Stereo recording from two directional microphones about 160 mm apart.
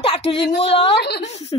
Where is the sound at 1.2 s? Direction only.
40° left (ahead or behind).